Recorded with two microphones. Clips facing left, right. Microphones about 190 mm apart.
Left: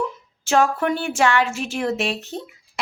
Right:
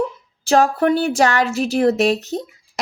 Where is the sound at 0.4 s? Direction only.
35° right (ahead or behind).